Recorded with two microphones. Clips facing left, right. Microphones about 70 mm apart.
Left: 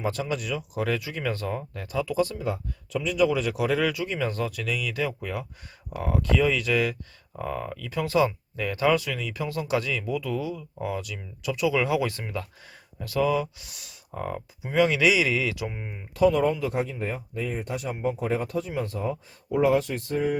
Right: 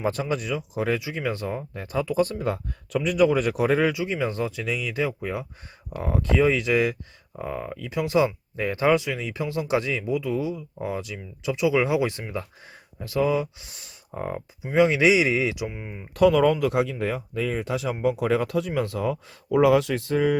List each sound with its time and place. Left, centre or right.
0.0 s speech: right
1.9 s speech: right
15.6 s speech: centre
16.1 s speech: right